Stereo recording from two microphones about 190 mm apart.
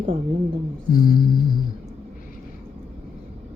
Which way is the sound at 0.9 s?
45° left (ahead or behind).